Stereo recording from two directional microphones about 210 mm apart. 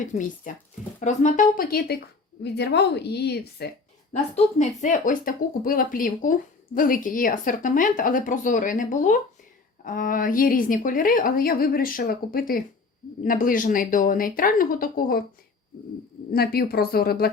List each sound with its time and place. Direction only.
0.0 s a woman's voice: 40° left (ahead or behind)
4.1 s speech: 35° left (ahead or behind)
16.3 s a woman's voice: 45° left (ahead or behind)